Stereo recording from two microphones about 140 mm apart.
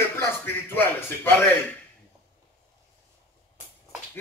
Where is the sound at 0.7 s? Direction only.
15° left (ahead or behind).